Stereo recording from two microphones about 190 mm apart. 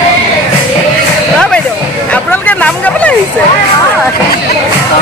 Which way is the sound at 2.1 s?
10° left (ahead or behind).